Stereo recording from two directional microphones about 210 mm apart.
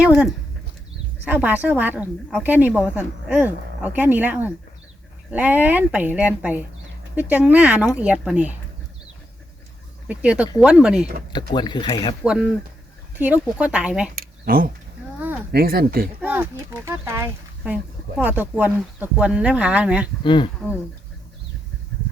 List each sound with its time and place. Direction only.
0.0 s speech: 5° right (ahead or behind)
10.1 s speech: 5° right (ahead or behind)
11.3 s speech: 20° left (ahead or behind)
12.2 s speech: 5° right (ahead or behind)
14.2 s a sound: 45° right (ahead or behind)
15.5 s speech: 45° right (ahead or behind)
16.2 s speech: 10° right (ahead or behind)
20.2 s speech: 25° left (ahead or behind)